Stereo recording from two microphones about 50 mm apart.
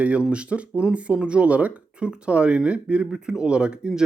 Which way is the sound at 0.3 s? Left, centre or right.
Right.